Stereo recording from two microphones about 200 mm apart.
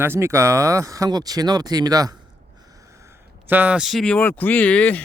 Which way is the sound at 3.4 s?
10° right (ahead or behind).